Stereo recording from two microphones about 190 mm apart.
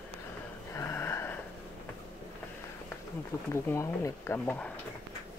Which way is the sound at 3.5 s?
15° left (ahead or behind).